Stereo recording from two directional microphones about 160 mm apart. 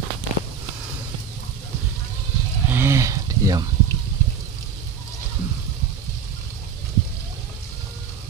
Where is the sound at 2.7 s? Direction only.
15° right (ahead or behind).